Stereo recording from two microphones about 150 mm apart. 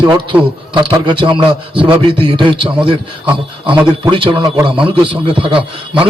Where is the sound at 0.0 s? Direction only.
35° right (ahead or behind).